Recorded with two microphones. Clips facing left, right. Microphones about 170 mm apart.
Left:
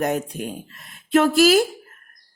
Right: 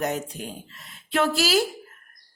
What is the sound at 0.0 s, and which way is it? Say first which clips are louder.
Speech: left 5 dB; 55° left (ahead or behind).